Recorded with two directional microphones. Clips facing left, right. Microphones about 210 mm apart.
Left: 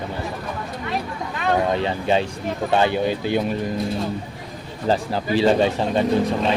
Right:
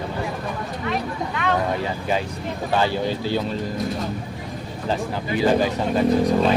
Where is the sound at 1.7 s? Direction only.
25° left (ahead or behind).